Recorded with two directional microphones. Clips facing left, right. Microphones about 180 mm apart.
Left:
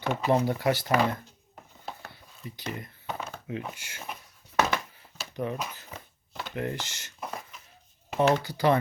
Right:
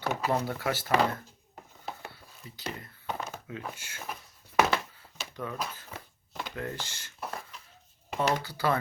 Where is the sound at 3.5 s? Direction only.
15° left (ahead or behind).